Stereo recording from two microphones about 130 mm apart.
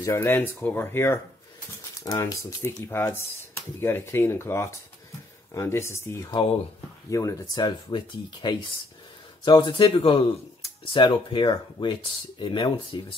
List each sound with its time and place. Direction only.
0.0 s speech: 20° left (ahead or behind); by 13.0 s 40° left (ahead or behind)